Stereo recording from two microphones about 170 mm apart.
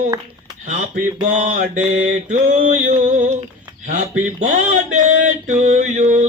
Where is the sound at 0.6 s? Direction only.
50° right (ahead or behind).